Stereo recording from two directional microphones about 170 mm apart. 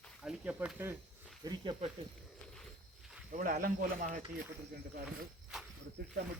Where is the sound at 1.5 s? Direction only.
30° right (ahead or behind).